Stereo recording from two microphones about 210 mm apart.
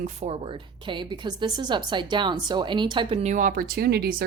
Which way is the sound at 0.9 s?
20° right (ahead or behind).